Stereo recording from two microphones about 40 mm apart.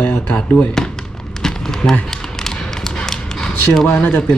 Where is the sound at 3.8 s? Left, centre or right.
Left.